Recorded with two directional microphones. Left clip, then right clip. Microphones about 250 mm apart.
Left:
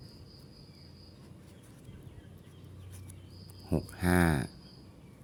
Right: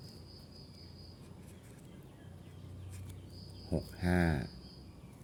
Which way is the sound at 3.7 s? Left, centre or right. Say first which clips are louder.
Left 5 dB; left.